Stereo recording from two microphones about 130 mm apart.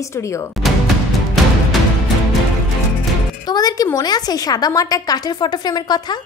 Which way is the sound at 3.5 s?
30° left (ahead or behind).